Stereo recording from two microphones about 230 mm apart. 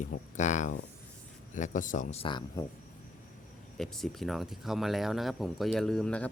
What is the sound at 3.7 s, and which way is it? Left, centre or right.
Speech, centre.